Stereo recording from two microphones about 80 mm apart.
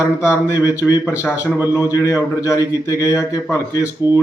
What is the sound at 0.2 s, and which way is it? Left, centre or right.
A man's voice, left.